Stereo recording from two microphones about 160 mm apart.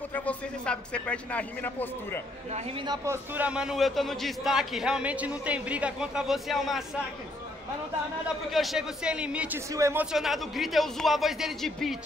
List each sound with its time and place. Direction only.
0.1 s speech: 10° left (ahead or behind)
3.3 s a man's voice: 5° right (ahead or behind)
8.5 s a man's voice: centre (ahead or behind)
9.7 s speech: 20° right (ahead or behind)
10.1 s a man's voice: centre (ahead or behind)